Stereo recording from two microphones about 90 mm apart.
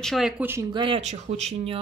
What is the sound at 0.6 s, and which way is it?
Speech, 65° right (ahead or behind).